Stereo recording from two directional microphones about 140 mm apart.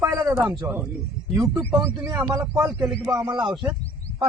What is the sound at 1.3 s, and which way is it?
Speech, 25° right (ahead or behind).